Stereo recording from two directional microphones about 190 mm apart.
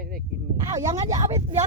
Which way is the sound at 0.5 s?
20° right (ahead or behind).